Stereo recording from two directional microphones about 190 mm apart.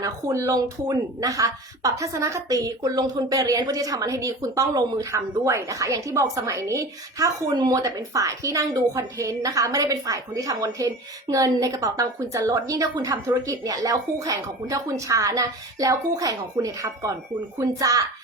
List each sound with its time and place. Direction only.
0.0 s a woman's voice: 15° right (ahead or behind)